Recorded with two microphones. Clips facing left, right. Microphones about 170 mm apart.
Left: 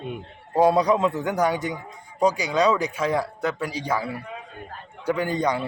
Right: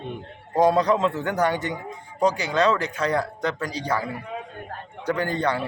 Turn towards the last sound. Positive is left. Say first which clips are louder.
# left 1 dB
turn(degrees=10)  # may be behind; listen again after turning